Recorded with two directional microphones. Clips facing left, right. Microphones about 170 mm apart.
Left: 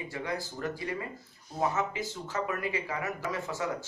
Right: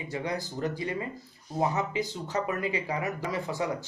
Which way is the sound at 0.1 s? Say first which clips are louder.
Right 5 dB; 20° right (ahead or behind).